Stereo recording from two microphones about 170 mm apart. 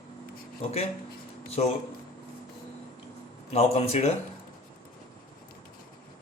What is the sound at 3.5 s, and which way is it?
Speech, 40° left (ahead or behind).